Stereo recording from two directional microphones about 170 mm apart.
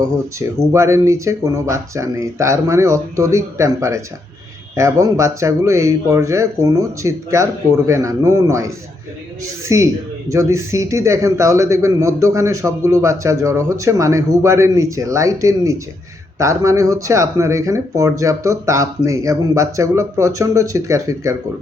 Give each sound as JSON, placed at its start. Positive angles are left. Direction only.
{"t": 0.3, "sound": "speech", "side_deg": -15}